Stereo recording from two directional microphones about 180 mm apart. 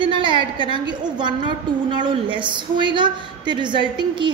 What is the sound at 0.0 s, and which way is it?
A woman's voice, 25° right (ahead or behind).